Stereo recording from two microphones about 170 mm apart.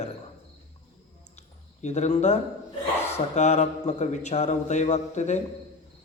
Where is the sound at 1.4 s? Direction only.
40° left (ahead or behind).